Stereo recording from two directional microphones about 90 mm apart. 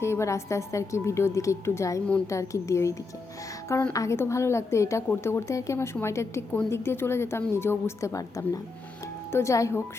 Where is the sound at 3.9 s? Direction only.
30° left (ahead or behind).